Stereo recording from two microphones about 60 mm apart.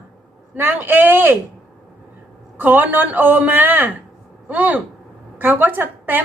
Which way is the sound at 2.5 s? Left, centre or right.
Right.